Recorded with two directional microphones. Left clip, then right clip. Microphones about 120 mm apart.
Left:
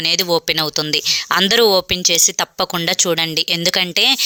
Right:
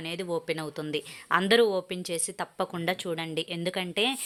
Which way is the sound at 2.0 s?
25° left (ahead or behind).